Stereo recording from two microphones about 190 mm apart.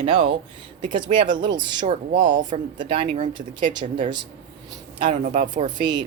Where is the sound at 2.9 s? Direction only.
30° right (ahead or behind).